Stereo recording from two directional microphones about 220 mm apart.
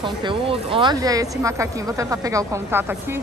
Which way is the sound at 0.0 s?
20° right (ahead or behind).